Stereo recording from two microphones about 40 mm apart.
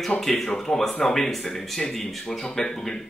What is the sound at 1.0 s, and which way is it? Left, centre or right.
Speech, centre.